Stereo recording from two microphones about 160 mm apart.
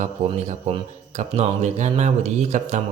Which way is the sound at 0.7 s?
45° right (ahead or behind).